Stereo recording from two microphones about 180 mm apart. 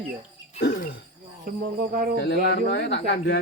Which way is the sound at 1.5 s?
55° right (ahead or behind).